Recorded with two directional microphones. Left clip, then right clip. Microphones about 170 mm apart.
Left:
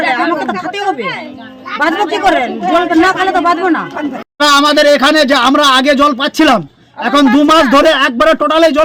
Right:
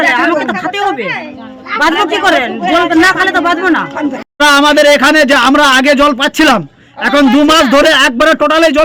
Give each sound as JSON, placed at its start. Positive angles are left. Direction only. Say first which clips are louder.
{"t": 0.1, "sound": "a sound", "louder": "right 3 dB", "side_deg": -5}
{"t": 1.8, "sound": "a man's voice", "louder": "right 2 dB", "side_deg": -5}
{"t": 4.7, "sound": "a man's voice", "louder": "right 2 dB", "side_deg": -25}
{"t": 5.3, "sound": "a man's voice", "louder": "right 1 dB", "side_deg": -10}